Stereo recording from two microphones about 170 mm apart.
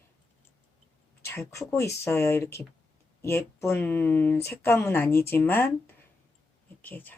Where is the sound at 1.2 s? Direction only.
15° left (ahead or behind).